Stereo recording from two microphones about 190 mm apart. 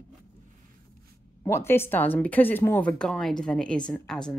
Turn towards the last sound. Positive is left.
turn(degrees=5)  # may be behind; listen again after turning